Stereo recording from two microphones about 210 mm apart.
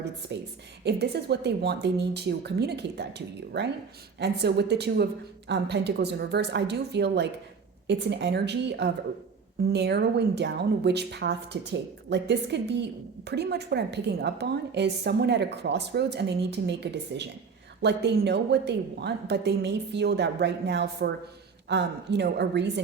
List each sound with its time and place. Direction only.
0.3 s a woman's voice: 55° right (ahead or behind)